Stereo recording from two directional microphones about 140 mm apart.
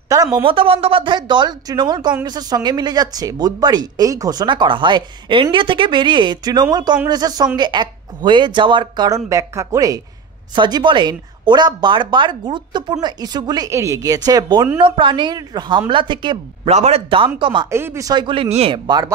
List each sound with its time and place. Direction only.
0.1 s a sound: 25° right (ahead or behind)
0.4 s speech: 40° right (ahead or behind)
16.7 s a man's voice: 50° right (ahead or behind)
17.6 s speech: 20° right (ahead or behind); by 18.8 s 45° right (ahead or behind)
18.9 s speech: 30° right (ahead or behind)